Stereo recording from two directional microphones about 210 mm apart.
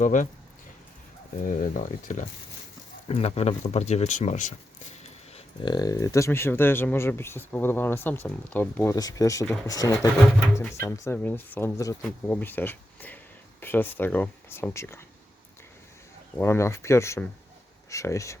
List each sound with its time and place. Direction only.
0.0 s speech: 35° left (ahead or behind)
1.5 s speech: 35° left (ahead or behind)
5.6 s speech: 20° left (ahead or behind)
16.4 s speech: 10° left (ahead or behind)